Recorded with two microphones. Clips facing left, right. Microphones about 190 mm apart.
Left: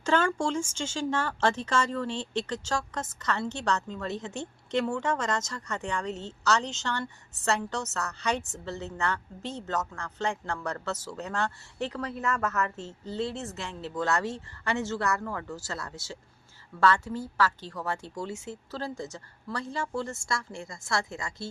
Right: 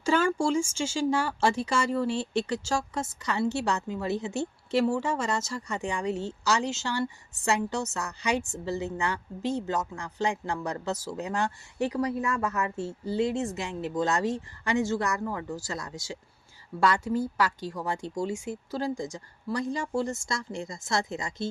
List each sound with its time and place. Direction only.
0.0 s speech: 10° right (ahead or behind)